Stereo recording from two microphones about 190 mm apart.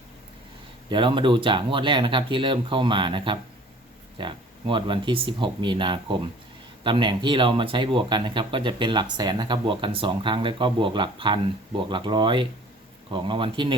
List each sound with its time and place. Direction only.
0.9 s speech: 25° right (ahead or behind)